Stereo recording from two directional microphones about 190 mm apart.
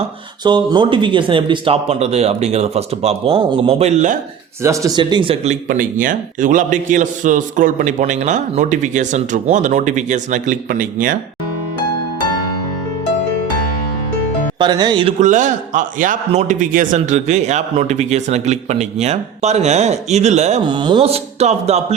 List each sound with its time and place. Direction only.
0.4 s a man's voice: 25° right (ahead or behind); by 4.2 s 40° right (ahead or behind)
4.6 s speech: 15° right (ahead or behind)
5.6 s a man's voice: 45° right (ahead or behind)
14.6 s speech: 20° right (ahead or behind)
15.2 s a man's voice: 40° right (ahead or behind)
20.7 s a man's voice: 25° right (ahead or behind)